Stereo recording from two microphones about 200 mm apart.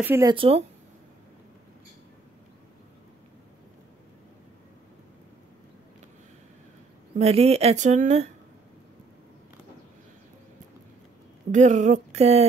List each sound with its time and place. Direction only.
0.0 s speech: 10° right (ahead or behind)
0.3 s speech: 25° right (ahead or behind)
7.2 s speech: 30° right (ahead or behind)
11.5 s speech: 35° right (ahead or behind)